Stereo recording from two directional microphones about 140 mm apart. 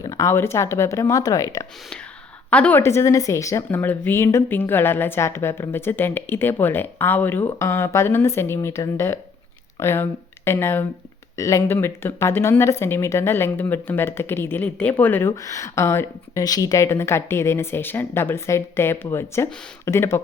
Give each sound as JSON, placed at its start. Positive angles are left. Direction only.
{"t": 0.0, "sound": "speech", "side_deg": 25}
{"t": 2.5, "sound": "speech", "side_deg": 10}